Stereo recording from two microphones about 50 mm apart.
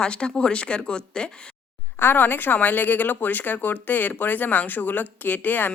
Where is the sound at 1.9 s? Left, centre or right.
Left.